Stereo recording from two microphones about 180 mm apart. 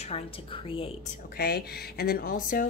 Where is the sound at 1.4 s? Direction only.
60° left (ahead or behind).